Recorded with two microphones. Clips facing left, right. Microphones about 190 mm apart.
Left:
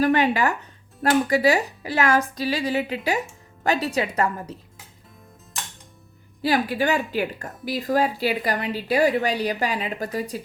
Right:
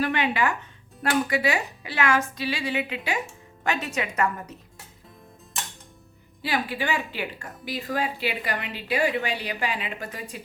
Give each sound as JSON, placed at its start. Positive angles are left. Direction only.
{"t": 0.0, "sound": "speech", "side_deg": 40}
{"t": 6.4, "sound": "speech", "side_deg": 40}